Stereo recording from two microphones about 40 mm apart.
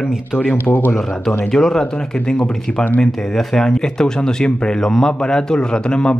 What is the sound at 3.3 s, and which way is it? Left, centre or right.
Speech, centre.